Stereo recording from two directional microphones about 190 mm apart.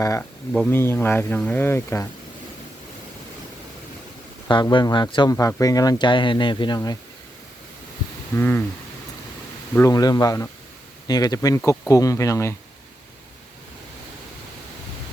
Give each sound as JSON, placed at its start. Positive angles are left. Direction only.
{"t": 0.0, "sound": "speech", "side_deg": 15}
{"t": 4.4, "sound": "speech", "side_deg": 25}
{"t": 8.4, "sound": "speech", "side_deg": 10}
{"t": 9.7, "sound": "speech", "side_deg": 15}